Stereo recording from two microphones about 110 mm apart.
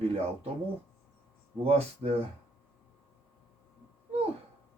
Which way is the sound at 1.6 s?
70° right (ahead or behind).